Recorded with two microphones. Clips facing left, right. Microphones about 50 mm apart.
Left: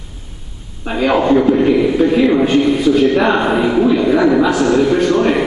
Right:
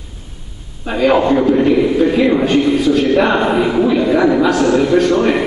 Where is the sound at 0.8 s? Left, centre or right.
Centre.